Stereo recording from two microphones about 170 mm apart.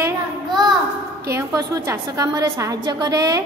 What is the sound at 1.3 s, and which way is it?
A woman's voice, 20° right (ahead or behind).